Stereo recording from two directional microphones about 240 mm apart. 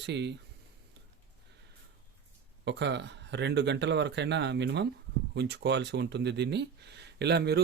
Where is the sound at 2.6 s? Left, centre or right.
Right.